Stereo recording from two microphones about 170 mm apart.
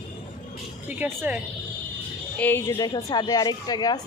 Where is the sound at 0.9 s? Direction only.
10° right (ahead or behind).